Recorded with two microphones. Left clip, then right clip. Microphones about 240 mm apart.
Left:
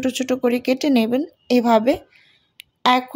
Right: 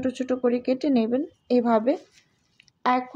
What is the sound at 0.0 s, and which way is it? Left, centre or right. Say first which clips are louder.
Speech: left 4 dB; left.